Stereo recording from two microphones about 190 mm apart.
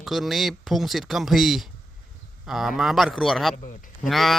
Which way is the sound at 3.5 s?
40° left (ahead or behind).